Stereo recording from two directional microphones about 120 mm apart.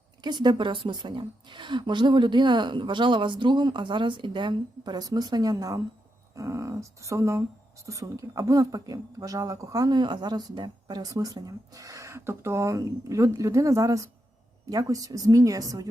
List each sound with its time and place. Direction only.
0.2 s a woman's voice: 40° right (ahead or behind)